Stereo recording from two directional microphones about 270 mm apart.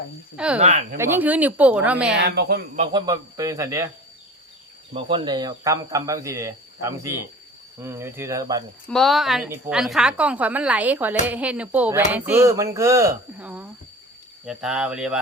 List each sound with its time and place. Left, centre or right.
0.3 s a woman's voice: centre
0.6 s speech: right
0.9 s a woman's voice: centre
2.1 s speech: right
2.8 s speech: centre
4.9 s speech: centre
8.9 s a woman's voice: centre